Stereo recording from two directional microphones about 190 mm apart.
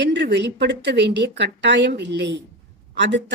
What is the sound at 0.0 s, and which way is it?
Speech, 70° right (ahead or behind).